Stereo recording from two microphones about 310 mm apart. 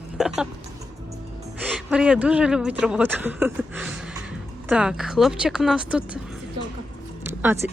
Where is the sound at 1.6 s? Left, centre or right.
Centre.